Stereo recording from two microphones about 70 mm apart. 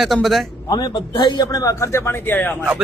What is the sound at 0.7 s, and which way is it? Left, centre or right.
Speech, left.